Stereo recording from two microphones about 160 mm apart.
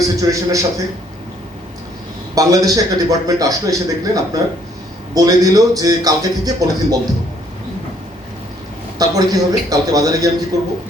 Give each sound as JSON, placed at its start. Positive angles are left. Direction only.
{"t": 0.2, "sound": "a man's voice", "side_deg": -20}
{"t": 2.3, "sound": "a man's voice", "side_deg": -20}
{"t": 9.0, "sound": "a man's voice", "side_deg": -25}